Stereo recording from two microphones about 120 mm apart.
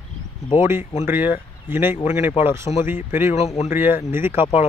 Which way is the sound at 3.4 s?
60° left (ahead or behind).